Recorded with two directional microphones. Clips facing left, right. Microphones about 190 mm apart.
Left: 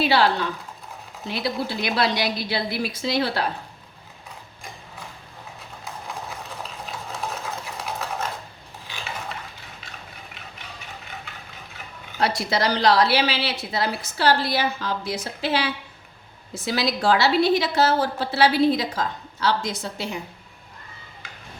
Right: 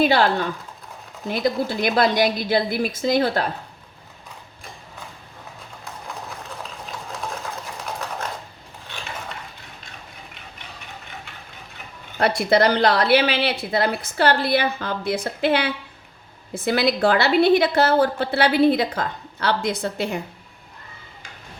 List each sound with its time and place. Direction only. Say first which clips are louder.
0.0 s a woman's voice: right 2 dB; 50° right (ahead or behind)
12.2 s a woman's voice: right 5 dB; 55° right (ahead or behind)